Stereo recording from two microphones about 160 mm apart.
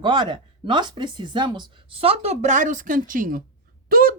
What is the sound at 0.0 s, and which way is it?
Speech, 30° right (ahead or behind).